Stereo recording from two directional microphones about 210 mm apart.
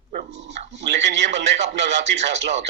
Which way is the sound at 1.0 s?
55° right (ahead or behind).